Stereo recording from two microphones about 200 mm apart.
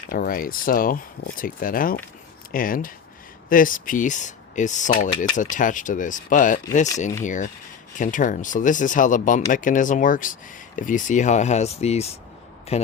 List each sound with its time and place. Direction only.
0.1 s speech: 45° left (ahead or behind)